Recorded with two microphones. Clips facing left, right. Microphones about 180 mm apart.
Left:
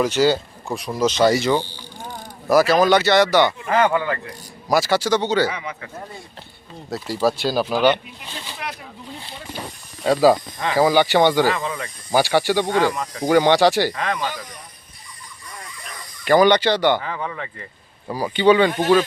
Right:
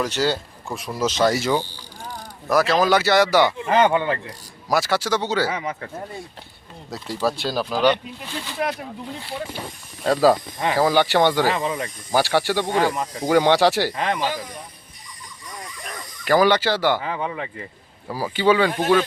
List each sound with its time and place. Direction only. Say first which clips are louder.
0.0 s speech: left 5 dB; 5° left (ahead or behind)
3.6 s speech: right 1 dB; 25° right (ahead or behind)
4.7 s speech: left 3 dB; centre (ahead or behind)
5.5 s speech: right 2 dB; 45° right (ahead or behind)
6.9 s speech: left 3 dB; 5° left (ahead or behind)
7.9 s speech: left 1 dB; 20° left (ahead or behind)
10.0 s speech: left 2 dB; centre (ahead or behind)
11.5 s speech: right 2 dB; 20° right (ahead or behind)
12.1 s speech: left 2 dB; centre (ahead or behind)
13.9 s speech: right 1 dB; 25° right (ahead or behind)
16.2 s speech: left 3 dB; 5° right (ahead or behind)
18.1 s speech: left 3 dB; 5° right (ahead or behind)